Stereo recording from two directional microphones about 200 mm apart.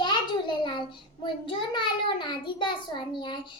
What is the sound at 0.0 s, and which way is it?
A child's voice, 20° left (ahead or behind).